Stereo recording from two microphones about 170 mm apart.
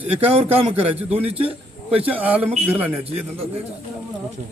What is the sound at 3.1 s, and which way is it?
Speech, 35° right (ahead or behind).